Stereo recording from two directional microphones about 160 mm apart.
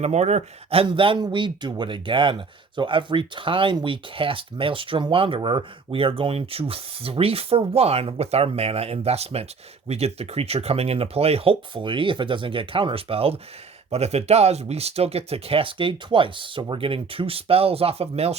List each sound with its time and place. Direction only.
0.0 s speech: 45° right (ahead or behind)